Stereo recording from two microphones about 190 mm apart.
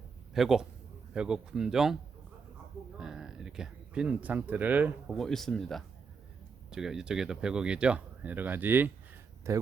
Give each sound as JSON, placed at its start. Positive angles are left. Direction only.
{"t": 0.3, "sound": "speech", "side_deg": 0}
{"t": 3.0, "sound": "speech", "side_deg": -5}